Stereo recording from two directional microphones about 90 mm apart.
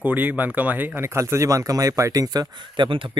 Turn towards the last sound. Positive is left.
turn(degrees=-65)  # may be behind; listen again after turning